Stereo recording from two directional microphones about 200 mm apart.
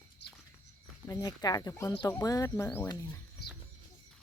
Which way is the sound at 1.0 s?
20° left (ahead or behind).